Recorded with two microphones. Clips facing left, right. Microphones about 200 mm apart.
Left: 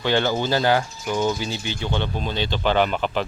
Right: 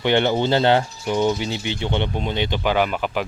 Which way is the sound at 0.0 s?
20° right (ahead or behind).